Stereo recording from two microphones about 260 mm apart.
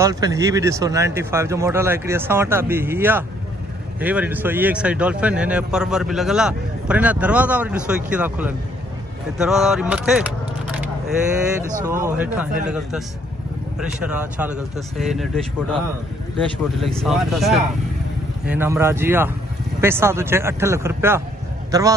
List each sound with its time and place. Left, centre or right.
0.0 s speech: centre
11.8 s speech: centre